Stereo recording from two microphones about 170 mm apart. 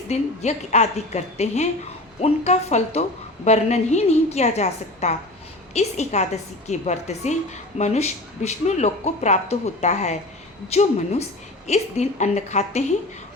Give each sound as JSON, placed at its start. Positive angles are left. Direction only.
{"t": 0.1, "sound": "speech", "side_deg": 40}